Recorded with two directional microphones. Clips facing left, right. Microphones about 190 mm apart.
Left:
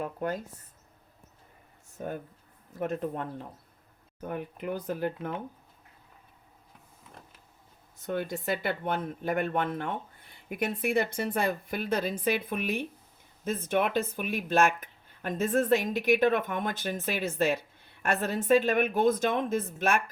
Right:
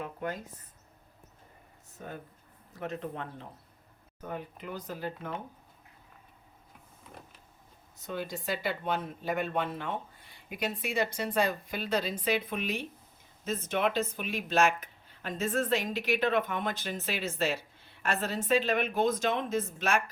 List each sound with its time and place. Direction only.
0.0 s speech: 40° left (ahead or behind)
2.7 s speech: 50° left (ahead or behind)
4.3 s speech: 55° left (ahead or behind)
8.0 s speech: 55° left (ahead or behind)